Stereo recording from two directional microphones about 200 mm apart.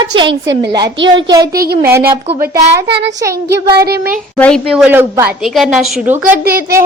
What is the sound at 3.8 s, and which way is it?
Child singing, 50° right (ahead or behind).